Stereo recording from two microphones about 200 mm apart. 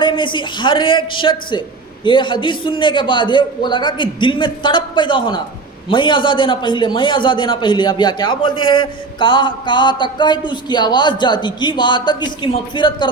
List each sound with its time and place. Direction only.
0.0 s a man's voice: 25° left (ahead or behind)